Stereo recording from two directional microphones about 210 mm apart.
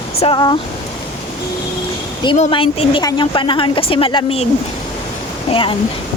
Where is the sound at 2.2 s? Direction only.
25° left (ahead or behind).